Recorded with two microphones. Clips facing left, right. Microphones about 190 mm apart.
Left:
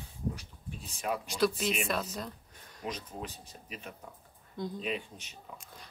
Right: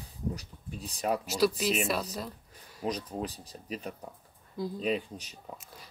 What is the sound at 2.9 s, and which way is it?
Speech, 35° right (ahead or behind).